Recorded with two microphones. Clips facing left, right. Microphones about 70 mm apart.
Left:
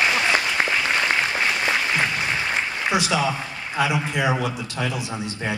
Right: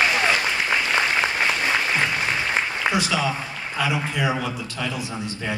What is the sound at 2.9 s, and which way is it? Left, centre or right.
A woman's voice, left.